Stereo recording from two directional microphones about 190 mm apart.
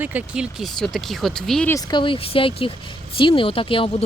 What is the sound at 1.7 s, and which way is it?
Speech, 20° left (ahead or behind).